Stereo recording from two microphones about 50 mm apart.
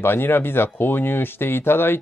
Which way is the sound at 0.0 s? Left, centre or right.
Left.